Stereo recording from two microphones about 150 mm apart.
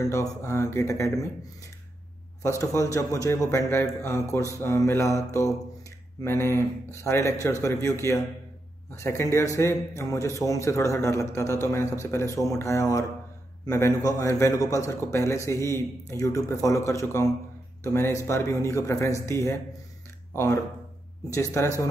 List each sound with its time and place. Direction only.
0.0 s a man's voice: 20° left (ahead or behind)
2.4 s a man's voice: 20° left (ahead or behind)
21.3 s a man's voice: 20° left (ahead or behind)